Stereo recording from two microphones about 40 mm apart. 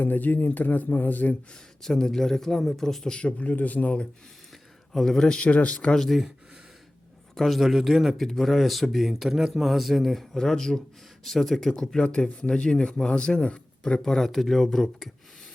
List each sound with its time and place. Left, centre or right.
0.0 s speech: left
1.8 s speech: centre
3.2 s speech: left
3.5 s speech: left
4.9 s speech: centre
5.4 s speech: left
5.8 s speech: centre
6.1 s speech: centre
7.3 s speech: centre
11.9 s speech: left
14.0 s speech: centre